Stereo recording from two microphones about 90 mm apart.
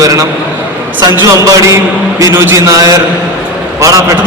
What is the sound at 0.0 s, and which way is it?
A man's voice, 40° right (ahead or behind).